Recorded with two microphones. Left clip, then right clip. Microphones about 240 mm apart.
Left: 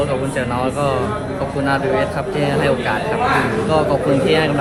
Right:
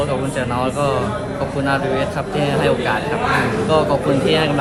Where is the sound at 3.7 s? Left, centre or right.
Centre.